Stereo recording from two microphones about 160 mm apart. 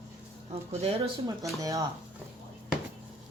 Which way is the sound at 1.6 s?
20° right (ahead or behind).